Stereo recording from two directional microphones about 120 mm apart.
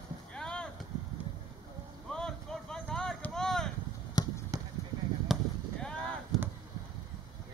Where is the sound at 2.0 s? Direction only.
5° left (ahead or behind).